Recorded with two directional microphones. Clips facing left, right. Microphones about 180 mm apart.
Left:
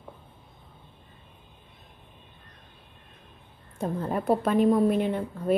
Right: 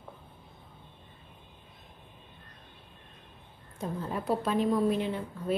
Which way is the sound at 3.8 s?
50° left (ahead or behind).